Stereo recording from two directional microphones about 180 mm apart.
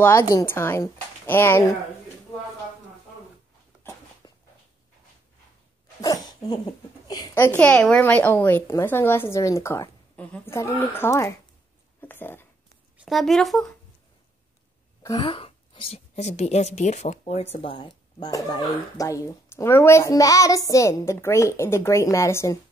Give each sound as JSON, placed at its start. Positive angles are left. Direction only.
{"t": 0.0, "sound": "a woman's voice", "side_deg": 15}
{"t": 4.2, "sound": "a sound", "side_deg": 20}
{"t": 5.9, "sound": "cough", "side_deg": 20}
{"t": 7.1, "sound": "a woman's voice", "side_deg": 15}
{"t": 13.0, "sound": "speech", "side_deg": 0}
{"t": 15.0, "sound": "speech", "side_deg": 25}